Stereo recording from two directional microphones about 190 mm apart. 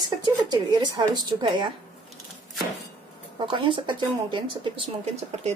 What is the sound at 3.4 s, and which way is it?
Speech, 25° right (ahead or behind).